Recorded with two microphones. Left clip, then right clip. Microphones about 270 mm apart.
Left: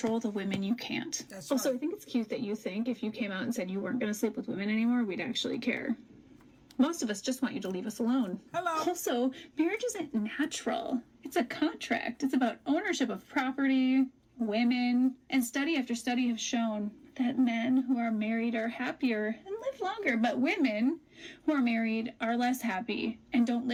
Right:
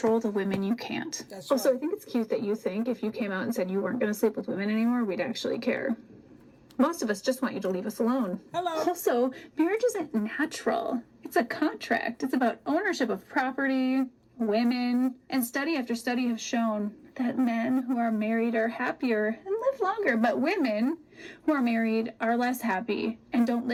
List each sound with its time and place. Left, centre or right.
0.0 s speech: right